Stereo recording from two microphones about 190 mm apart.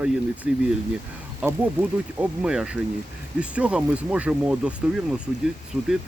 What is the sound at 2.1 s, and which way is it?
Speech, 5° right (ahead or behind).